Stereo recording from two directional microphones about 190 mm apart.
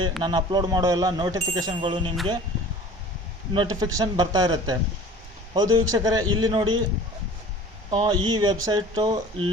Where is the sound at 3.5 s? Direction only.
20° right (ahead or behind).